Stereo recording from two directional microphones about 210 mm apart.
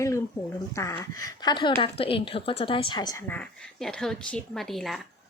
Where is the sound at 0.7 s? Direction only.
15° left (ahead or behind).